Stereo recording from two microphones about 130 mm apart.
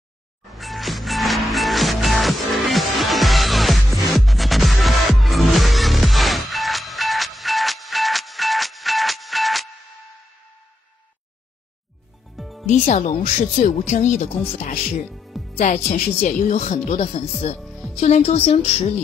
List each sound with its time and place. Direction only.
0.5 s music: centre (ahead or behind)
12.4 s music: centre (ahead or behind)
12.6 s speech: 70° left (ahead or behind)
15.1 s music: centre (ahead or behind)
15.5 s a woman's voice: 60° left (ahead or behind)
17.6 s music: centre (ahead or behind)
17.9 s a woman's voice: 60° left (ahead or behind)